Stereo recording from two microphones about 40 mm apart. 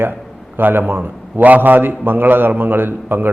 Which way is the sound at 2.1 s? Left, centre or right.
Right.